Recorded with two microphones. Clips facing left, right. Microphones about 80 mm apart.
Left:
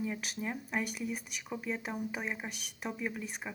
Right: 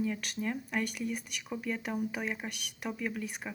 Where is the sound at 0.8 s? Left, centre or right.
Centre.